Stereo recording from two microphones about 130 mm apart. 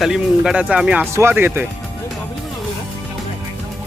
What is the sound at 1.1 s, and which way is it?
Speech, 20° right (ahead or behind).